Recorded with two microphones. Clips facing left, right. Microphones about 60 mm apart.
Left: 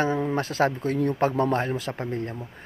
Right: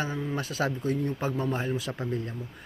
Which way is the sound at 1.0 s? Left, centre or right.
Left.